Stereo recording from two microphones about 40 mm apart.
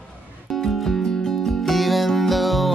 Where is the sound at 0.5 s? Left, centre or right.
Centre.